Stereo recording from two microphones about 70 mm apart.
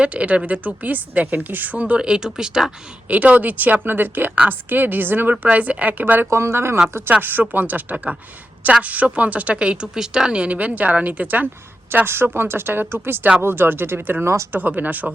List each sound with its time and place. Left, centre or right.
0.0 s a woman's voice: centre
3.1 s a woman's voice: right
6.3 s a woman's voice: right
7.1 s a woman's voice: right